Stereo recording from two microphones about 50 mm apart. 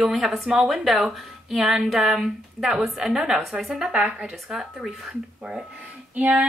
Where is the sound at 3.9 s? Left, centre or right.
Right.